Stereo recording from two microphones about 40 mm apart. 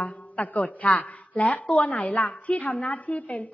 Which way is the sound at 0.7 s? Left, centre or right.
Left.